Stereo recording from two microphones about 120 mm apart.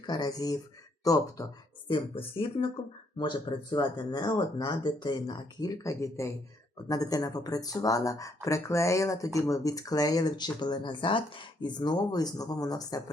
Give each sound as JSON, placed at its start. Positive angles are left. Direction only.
{"t": 0.0, "sound": "speech", "side_deg": 35}
{"t": 1.9, "sound": "speech", "side_deg": 50}
{"t": 3.2, "sound": "speech", "side_deg": 40}